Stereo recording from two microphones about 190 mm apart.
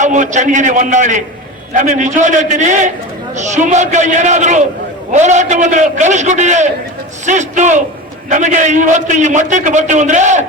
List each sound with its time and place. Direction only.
0.0 s a man's voice: 40° right (ahead or behind)